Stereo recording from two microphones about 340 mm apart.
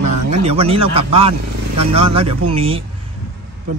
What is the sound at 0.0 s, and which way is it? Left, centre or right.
Speech, centre.